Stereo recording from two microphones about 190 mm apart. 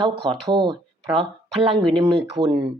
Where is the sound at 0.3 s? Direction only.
25° right (ahead or behind).